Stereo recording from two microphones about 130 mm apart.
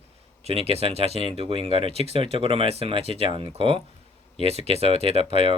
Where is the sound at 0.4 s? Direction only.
50° right (ahead or behind).